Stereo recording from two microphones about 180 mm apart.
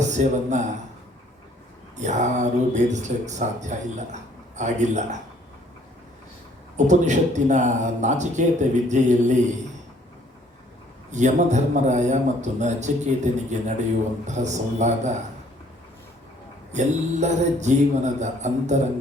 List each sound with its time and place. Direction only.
0.0 s a man's voice: 40° right (ahead or behind)
2.0 s speech: 40° right (ahead or behind)
6.7 s speech: 40° right (ahead or behind)
11.1 s speech: 40° right (ahead or behind)
16.7 s speech: 40° right (ahead or behind)